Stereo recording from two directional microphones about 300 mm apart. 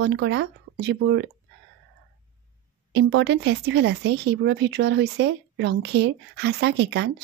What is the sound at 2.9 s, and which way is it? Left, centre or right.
Speech, right.